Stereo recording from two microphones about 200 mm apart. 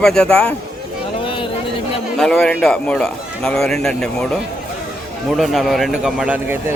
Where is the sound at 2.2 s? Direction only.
5° left (ahead or behind).